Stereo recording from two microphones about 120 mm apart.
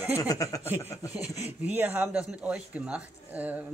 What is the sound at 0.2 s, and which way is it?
Speech, 30° left (ahead or behind).